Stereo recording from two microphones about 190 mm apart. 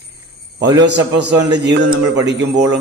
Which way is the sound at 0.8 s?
65° right (ahead or behind).